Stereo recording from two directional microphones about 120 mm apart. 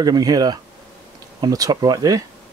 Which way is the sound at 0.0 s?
30° right (ahead or behind).